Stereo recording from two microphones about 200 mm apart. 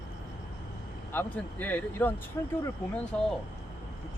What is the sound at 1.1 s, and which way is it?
Speech, 10° left (ahead or behind).